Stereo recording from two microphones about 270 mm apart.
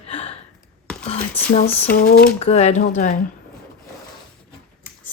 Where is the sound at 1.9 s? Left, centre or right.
Left.